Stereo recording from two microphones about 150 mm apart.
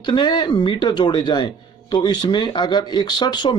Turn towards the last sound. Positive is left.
turn(degrees=30)  # may be behind; listen again after turning